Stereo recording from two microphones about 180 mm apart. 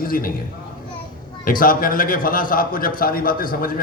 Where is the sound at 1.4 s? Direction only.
50° left (ahead or behind).